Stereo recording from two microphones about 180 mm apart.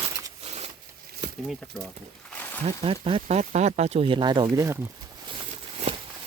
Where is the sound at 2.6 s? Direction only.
30° right (ahead or behind).